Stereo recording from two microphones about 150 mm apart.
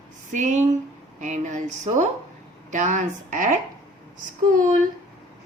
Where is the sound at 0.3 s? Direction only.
55° right (ahead or behind).